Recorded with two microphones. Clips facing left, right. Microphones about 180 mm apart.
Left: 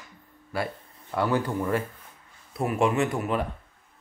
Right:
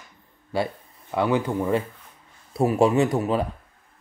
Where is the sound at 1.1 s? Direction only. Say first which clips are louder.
Right 3 dB; 20° right (ahead or behind).